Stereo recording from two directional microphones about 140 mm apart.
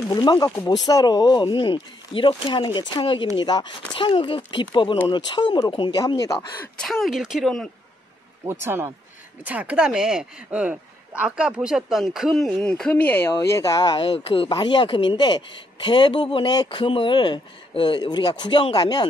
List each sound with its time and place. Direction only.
0.1 s speech: 30° left (ahead or behind)
6.8 s speech: centre (ahead or behind)
8.5 s speech: 15° right (ahead or behind); by 14.0 s 30° left (ahead or behind)
14.0 s speech: 40° left (ahead or behind)